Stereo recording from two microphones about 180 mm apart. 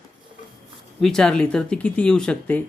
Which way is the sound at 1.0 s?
5° left (ahead or behind).